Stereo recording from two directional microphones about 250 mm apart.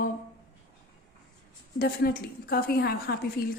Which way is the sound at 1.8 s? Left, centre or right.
Left.